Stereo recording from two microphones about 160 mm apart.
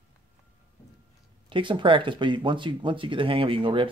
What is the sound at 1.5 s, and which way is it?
Speech, 30° right (ahead or behind).